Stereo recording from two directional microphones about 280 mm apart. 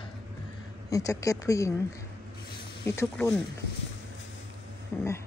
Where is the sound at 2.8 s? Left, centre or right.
Centre.